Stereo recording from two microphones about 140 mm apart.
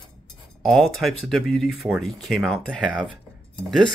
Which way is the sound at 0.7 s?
Centre (ahead or behind).